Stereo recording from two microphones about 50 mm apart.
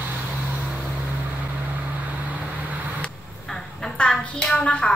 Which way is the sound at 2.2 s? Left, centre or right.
Right.